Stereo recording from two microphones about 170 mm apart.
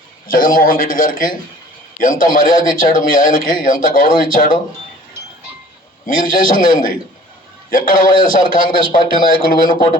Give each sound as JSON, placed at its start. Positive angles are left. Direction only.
{"t": 0.3, "sound": "speech", "side_deg": 55}
{"t": 6.1, "sound": "a man's voice", "side_deg": 55}